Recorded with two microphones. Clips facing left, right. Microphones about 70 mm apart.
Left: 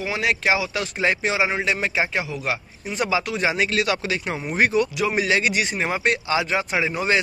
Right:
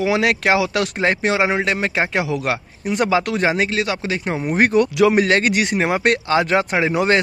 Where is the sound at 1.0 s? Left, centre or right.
Right.